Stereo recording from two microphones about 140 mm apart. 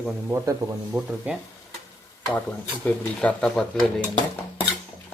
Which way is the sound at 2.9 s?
10° left (ahead or behind).